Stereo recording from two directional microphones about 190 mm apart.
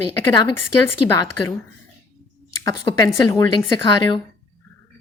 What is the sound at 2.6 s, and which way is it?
Speech, 20° left (ahead or behind).